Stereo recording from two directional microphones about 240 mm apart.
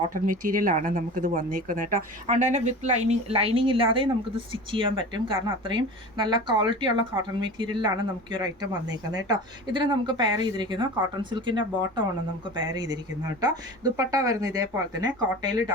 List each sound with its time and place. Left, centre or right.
0.1 s a woman's voice: right; by 15.7 s centre